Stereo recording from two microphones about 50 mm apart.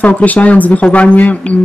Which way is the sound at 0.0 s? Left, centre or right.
Left.